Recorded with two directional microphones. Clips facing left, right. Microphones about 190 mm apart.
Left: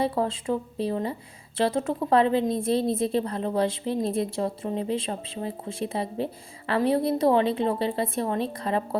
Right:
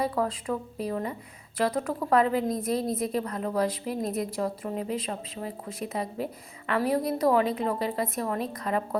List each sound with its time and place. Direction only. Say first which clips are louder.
0.0 s a woman's voice: left 2 dB; 25° left (ahead or behind)